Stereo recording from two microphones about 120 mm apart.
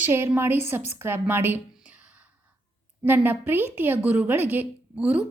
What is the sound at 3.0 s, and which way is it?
A woman's voice, 15° right (ahead or behind).